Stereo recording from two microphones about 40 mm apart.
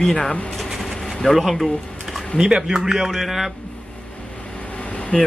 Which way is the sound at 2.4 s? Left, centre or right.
Centre.